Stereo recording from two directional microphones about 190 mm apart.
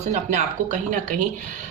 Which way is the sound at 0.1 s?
40° right (ahead or behind).